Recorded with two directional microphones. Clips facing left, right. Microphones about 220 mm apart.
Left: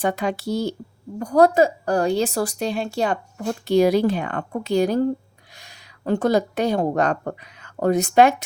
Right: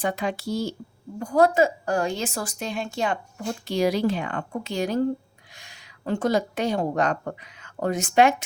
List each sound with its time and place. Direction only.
0.1 s speech: 65° left (ahead or behind)
1.2 s a woman's voice: 40° left (ahead or behind)
3.8 s a woman's voice: 50° left (ahead or behind)
5.5 s a sound: 40° left (ahead or behind)
6.2 s a woman's voice: 40° left (ahead or behind)